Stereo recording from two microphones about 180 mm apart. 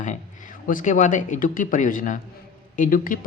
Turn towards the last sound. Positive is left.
turn(degrees=50)  # may be behind; listen again after turning